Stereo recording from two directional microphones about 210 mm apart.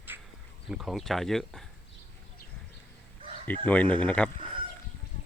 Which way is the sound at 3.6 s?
5° left (ahead or behind).